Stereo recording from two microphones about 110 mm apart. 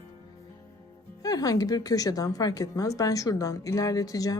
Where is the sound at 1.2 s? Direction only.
35° left (ahead or behind).